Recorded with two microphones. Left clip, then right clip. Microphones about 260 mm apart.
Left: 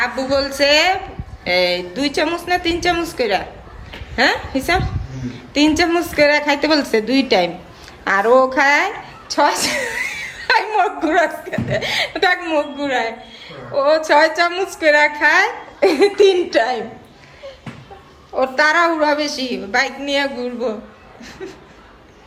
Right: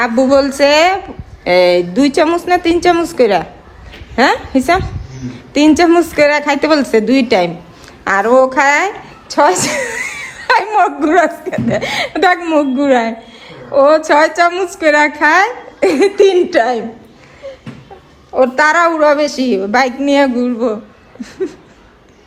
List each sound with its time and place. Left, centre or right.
0.0 s speech: centre
18.5 s speech: centre